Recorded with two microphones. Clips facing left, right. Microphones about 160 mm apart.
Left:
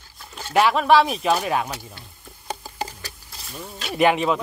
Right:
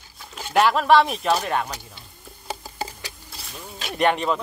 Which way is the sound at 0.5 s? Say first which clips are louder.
Even; centre (ahead or behind).